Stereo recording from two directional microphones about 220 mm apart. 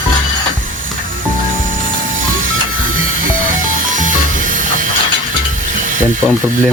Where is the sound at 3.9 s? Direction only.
35° right (ahead or behind).